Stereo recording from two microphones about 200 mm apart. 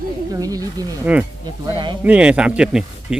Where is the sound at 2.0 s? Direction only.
5° right (ahead or behind).